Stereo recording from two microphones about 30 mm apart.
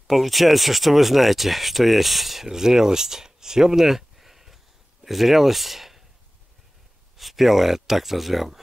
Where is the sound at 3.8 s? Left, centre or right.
Centre.